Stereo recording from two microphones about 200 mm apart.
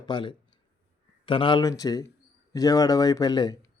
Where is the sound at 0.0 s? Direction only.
25° left (ahead or behind).